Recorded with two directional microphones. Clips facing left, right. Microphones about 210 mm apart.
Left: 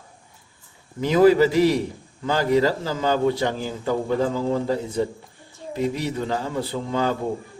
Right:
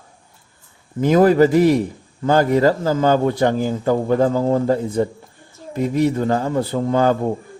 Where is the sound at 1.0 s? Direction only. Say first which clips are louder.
Right 3 dB; 50° right (ahead or behind).